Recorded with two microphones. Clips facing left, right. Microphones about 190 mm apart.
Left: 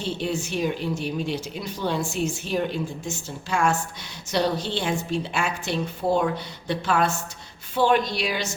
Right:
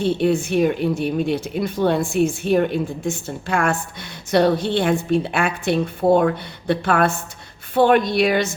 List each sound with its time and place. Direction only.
0.0 s speech: 55° right (ahead or behind)